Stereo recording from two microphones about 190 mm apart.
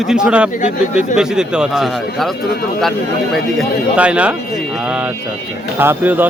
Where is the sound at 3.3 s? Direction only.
5° right (ahead or behind).